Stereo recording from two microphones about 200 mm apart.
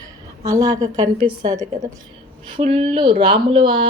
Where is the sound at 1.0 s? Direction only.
30° right (ahead or behind).